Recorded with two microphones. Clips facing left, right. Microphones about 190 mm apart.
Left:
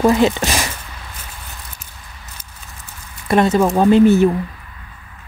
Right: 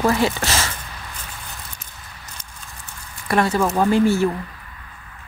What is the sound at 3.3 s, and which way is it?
Speech, 20° left (ahead or behind).